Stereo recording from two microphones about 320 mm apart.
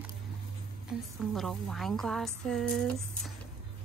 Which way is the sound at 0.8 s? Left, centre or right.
Centre.